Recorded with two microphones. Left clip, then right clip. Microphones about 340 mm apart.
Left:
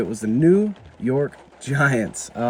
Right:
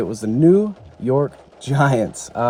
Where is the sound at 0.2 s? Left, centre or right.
Right.